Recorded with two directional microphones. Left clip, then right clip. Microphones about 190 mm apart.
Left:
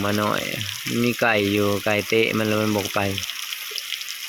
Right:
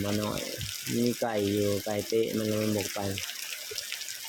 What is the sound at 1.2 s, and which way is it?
Speech, 30° left (ahead or behind).